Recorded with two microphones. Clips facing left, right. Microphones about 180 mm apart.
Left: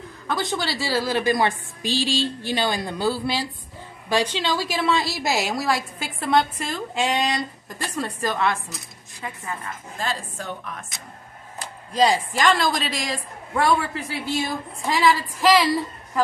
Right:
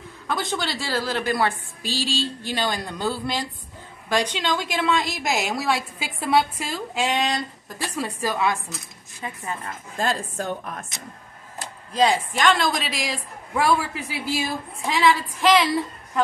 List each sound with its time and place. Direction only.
0.3 s a woman's voice: centre (ahead or behind)
9.2 s a woman's voice: 25° right (ahead or behind)
9.9 s a woman's voice: 45° right (ahead or behind)
11.9 s a woman's voice: centre (ahead or behind)